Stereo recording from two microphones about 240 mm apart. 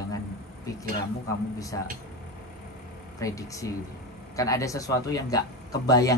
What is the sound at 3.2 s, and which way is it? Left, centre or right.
A woman's voice, centre.